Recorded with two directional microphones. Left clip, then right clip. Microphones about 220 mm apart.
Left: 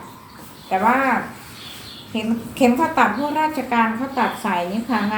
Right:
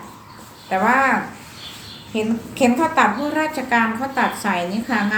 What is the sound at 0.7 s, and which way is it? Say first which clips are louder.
Speech: even; 15° right (ahead or behind).